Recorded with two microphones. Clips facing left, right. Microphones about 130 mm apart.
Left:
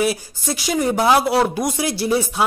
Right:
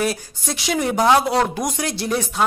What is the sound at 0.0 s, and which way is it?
Speech, 5° left (ahead or behind).